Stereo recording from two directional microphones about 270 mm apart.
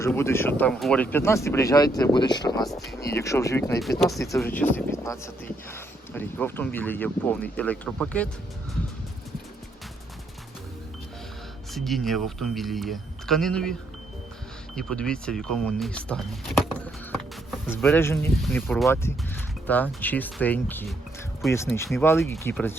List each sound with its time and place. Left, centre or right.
0.0 s speech: centre
2.6 s speech: centre
11.7 s speech: centre
14.8 s speech: centre